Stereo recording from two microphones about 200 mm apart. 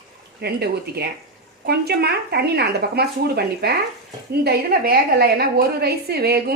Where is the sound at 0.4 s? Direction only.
55° right (ahead or behind).